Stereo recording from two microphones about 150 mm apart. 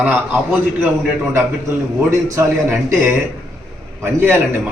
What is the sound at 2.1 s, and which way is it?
A man's voice, 20° right (ahead or behind).